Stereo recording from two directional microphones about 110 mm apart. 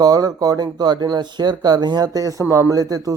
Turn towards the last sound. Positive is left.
turn(degrees=-35)  # may be behind; listen again after turning